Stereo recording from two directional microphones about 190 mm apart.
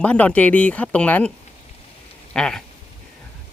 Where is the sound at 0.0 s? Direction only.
5° left (ahead or behind).